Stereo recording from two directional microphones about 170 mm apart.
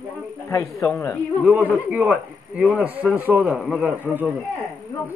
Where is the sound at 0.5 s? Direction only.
15° left (ahead or behind).